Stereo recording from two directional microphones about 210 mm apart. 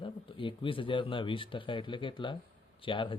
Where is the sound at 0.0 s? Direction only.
25° left (ahead or behind).